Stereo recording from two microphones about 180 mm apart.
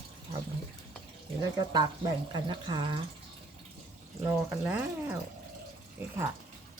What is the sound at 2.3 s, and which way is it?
Speech, 25° right (ahead or behind).